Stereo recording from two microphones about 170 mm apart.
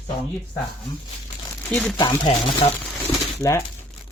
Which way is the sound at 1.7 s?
10° left (ahead or behind).